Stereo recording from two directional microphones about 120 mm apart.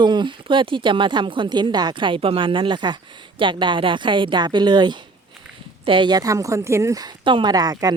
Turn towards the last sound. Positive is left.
turn(degrees=-35)  # may be behind; listen again after turning